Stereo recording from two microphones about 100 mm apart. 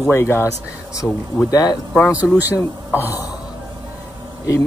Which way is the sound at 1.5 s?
40° left (ahead or behind).